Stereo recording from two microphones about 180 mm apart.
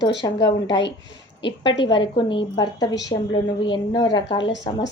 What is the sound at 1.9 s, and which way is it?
A woman's voice, 25° left (ahead or behind).